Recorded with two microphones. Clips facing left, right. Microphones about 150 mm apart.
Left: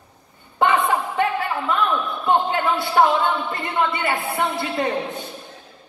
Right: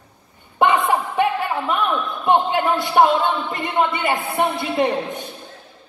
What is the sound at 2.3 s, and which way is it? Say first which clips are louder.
A man's voice: right 2 dB; 15° right (ahead or behind).